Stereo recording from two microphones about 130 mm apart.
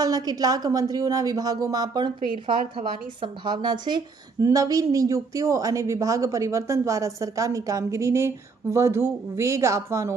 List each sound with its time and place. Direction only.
0.0 s a woman's voice: 30° right (ahead or behind)